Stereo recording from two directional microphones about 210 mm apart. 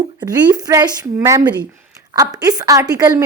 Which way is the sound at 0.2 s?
20° right (ahead or behind).